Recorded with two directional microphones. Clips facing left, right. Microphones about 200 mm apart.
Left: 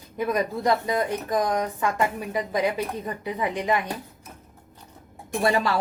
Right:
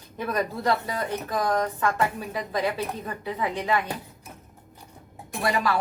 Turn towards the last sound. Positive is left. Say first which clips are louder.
# left 3 dB
turn(degrees=25)  # may be behind; listen again after turning